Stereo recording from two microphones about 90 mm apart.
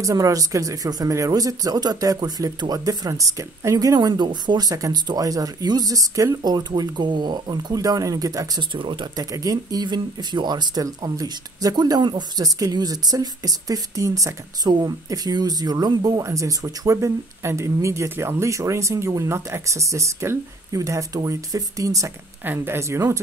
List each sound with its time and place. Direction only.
0.0 s speech: 40° right (ahead or behind)
8.7 s speech: 65° right (ahead or behind)
9.1 s speech: 45° right (ahead or behind)
22.4 s speech: 25° right (ahead or behind)